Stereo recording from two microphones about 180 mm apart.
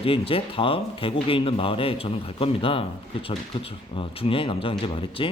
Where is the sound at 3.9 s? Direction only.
30° left (ahead or behind).